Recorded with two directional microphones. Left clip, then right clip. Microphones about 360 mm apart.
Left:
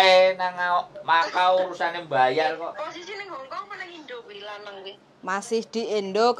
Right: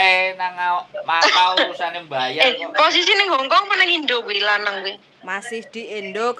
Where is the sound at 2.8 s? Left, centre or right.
Right; by 5.0 s centre.